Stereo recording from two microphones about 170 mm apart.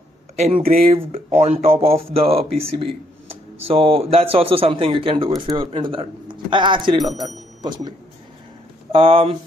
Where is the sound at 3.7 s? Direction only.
35° right (ahead or behind).